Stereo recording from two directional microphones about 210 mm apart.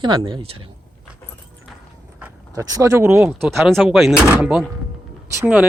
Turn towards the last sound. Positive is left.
turn(degrees=-10)  # may be behind; listen again after turning